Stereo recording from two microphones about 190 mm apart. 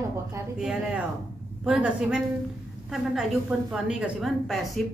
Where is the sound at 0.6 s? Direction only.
5° right (ahead or behind).